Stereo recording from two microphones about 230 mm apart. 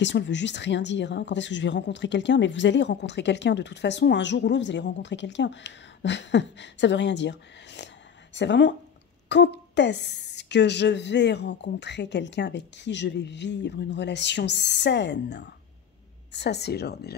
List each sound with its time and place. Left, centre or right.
0.0 s speech: left